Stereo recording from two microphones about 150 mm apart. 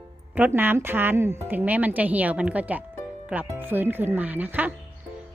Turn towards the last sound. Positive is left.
turn(degrees=-10)  # may be behind; listen again after turning